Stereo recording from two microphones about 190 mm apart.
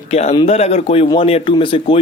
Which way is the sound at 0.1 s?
35° left (ahead or behind).